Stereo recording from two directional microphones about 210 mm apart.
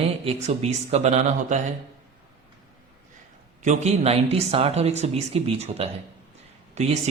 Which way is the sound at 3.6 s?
30° right (ahead or behind).